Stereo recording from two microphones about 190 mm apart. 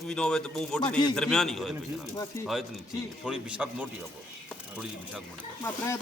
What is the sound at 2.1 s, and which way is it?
Speech, 15° left (ahead or behind).